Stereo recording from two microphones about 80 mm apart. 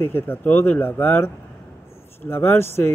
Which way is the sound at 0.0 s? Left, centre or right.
Left.